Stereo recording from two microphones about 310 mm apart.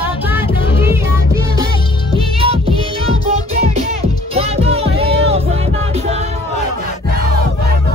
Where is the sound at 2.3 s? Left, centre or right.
Centre.